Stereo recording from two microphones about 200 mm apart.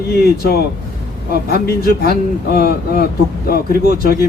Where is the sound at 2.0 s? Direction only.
50° left (ahead or behind).